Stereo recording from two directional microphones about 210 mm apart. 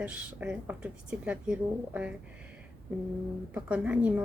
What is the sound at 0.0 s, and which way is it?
A woman's voice, 5° right (ahead or behind).